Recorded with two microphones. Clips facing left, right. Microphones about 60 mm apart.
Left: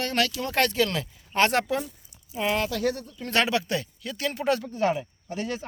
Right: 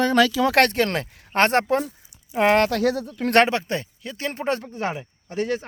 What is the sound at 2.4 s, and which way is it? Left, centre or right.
Speech, right.